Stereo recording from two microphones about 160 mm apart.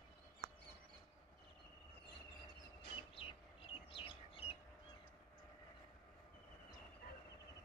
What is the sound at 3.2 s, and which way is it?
Bird, 35° left (ahead or behind).